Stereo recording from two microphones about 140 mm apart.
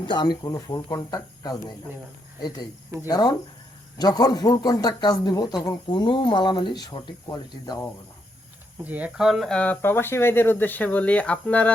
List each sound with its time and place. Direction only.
0.0 s a man's voice: 30° left (ahead or behind)
3.1 s a man's voice: 25° left (ahead or behind)
8.8 s speech: 10° right (ahead or behind); by 11.7 s 10° left (ahead or behind)